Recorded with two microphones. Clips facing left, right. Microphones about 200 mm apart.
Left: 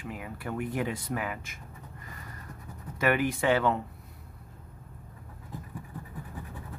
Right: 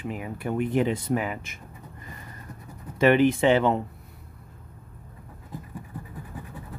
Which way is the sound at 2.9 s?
25° right (ahead or behind).